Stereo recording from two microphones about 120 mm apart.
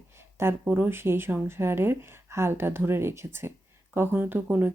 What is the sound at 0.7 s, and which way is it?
Speech, 20° right (ahead or behind).